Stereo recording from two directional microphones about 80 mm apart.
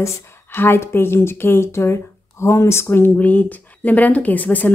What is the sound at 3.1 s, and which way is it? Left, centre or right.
Speech, centre.